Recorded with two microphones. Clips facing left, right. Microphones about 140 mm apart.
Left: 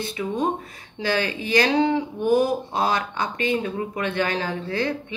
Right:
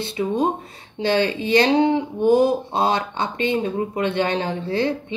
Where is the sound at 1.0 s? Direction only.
25° right (ahead or behind).